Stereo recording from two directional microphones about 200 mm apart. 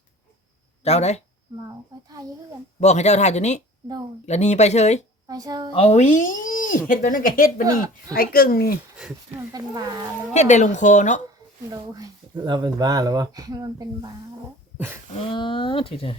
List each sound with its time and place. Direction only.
0.9 s speech: 35° left (ahead or behind)
1.6 s a child's voice: 20° right (ahead or behind)
2.8 s speech: 35° left (ahead or behind)
5.3 s speech: 20° right (ahead or behind)
5.7 s speech: 30° left (ahead or behind)
7.6 s a child's voice: 20° right (ahead or behind)
8.1 s speech: 45° left (ahead or behind)
9.0 s speech: 5° right (ahead or behind)
9.5 s speech: 20° right (ahead or behind)
10.3 s speech: 35° left (ahead or behind)
11.7 s speech: 20° right (ahead or behind)
15.3 s speech: 25° left (ahead or behind)